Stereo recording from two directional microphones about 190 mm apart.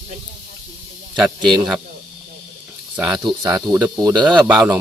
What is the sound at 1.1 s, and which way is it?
Speech, 5° right (ahead or behind).